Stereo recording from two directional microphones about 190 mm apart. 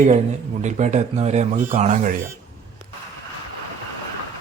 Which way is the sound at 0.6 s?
40° right (ahead or behind).